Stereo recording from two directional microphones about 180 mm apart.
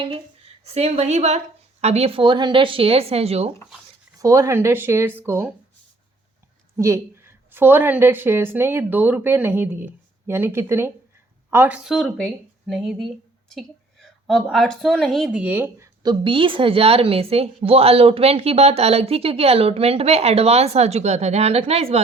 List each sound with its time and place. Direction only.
0.6 s speech: 35° right (ahead or behind)
4.2 s a woman's voice: 15° right (ahead or behind)
6.7 s a woman's voice: 15° right (ahead or behind)
16.0 s speech: 30° right (ahead or behind)